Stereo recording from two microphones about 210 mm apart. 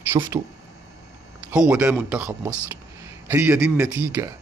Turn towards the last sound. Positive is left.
turn(degrees=-10)  # may be behind; listen again after turning